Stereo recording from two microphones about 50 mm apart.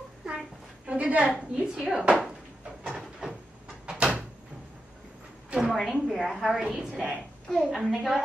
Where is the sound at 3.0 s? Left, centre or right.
Centre.